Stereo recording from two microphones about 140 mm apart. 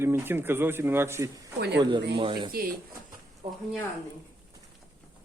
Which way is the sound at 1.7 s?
35° right (ahead or behind).